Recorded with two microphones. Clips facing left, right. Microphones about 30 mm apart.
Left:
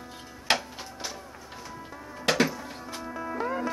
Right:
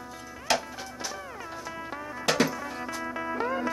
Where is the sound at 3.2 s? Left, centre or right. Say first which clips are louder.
Even; right.